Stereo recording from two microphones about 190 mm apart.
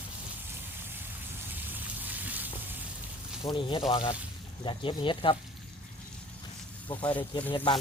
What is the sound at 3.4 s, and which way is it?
Speech, 25° left (ahead or behind).